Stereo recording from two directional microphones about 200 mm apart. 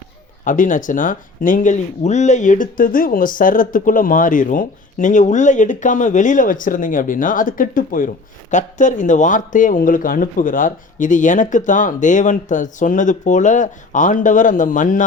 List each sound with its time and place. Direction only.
0.4 s speech: 40° left (ahead or behind)